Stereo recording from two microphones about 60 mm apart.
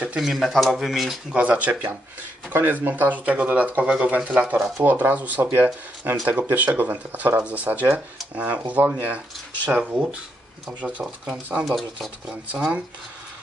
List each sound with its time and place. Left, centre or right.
0.2 s speech: centre
1.3 s speech: right
2.5 s speech: right; by 11.6 s centre
11.6 s speech: centre
12.3 s speech: right